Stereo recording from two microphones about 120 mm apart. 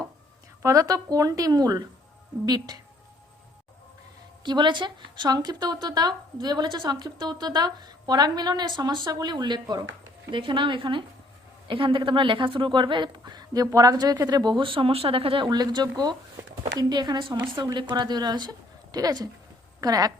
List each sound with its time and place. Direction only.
0.6 s a woman's voice: 25° right (ahead or behind)
4.4 s a woman's voice: 40° right (ahead or behind)